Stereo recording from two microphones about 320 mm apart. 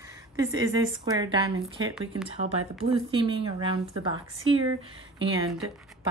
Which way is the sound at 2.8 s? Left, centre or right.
Centre.